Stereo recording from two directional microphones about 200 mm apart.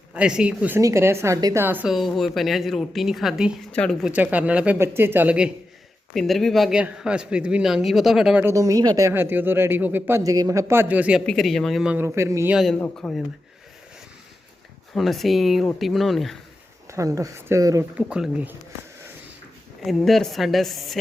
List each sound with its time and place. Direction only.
0.1 s a woman's voice: 5° right (ahead or behind)
4.1 s a woman's voice: 10° right (ahead or behind)
12.8 s a woman's voice: 5° left (ahead or behind)
14.9 s a woman's voice: centre (ahead or behind)
16.8 s speech: 15° right (ahead or behind)
18.0 s a woman's voice: 5° right (ahead or behind)
19.8 s a woman's voice: centre (ahead or behind)